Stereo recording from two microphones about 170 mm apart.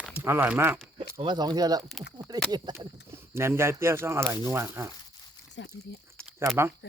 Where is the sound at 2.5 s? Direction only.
15° right (ahead or behind).